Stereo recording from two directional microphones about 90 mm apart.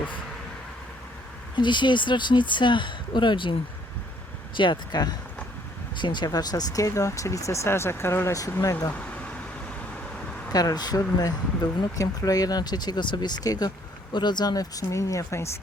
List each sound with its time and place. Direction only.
1.5 s speech: 60° left (ahead or behind)
4.5 s speech: 60° left (ahead or behind); by 8.9 s 35° left (ahead or behind)
9.0 s vehicle: 15° left (ahead or behind)
10.5 s speech: 45° left (ahead or behind)